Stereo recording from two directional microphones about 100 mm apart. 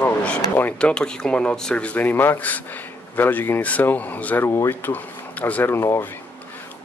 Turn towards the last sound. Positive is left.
turn(degrees=25)  # may be behind; listen again after turning